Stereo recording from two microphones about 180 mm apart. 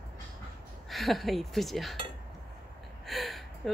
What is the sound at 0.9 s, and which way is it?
Speech, centre (ahead or behind).